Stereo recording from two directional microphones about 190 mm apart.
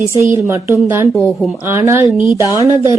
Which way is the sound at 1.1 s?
Centre (ahead or behind).